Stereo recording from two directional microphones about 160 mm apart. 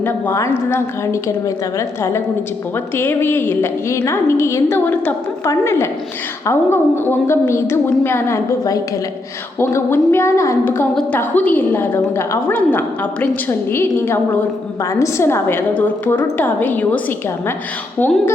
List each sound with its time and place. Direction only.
0.0 s a woman's voice: 15° left (ahead or behind)
2.9 s a woman's voice: 15° left (ahead or behind)